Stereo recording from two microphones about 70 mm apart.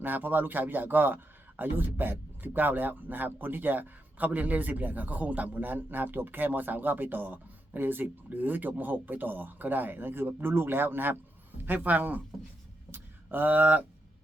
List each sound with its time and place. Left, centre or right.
0.0 s a man's voice: right